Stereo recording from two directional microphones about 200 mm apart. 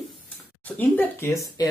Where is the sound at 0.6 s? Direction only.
10° left (ahead or behind).